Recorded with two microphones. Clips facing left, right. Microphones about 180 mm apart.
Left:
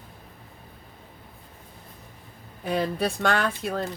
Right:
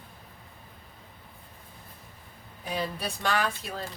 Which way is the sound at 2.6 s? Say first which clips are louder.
Left 7 dB; 55° left (ahead or behind).